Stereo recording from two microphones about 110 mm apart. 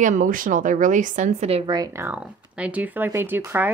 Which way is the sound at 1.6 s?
40° right (ahead or behind).